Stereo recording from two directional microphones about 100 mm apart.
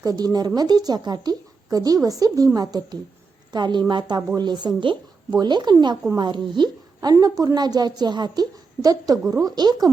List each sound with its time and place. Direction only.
0.0 s a woman's voice: 40° right (ahead or behind)